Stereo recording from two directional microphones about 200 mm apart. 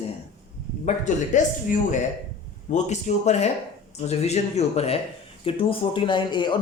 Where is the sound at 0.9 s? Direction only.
40° left (ahead or behind).